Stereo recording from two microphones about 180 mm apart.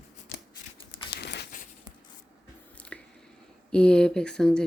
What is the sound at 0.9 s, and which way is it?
Crumpling, 70° left (ahead or behind).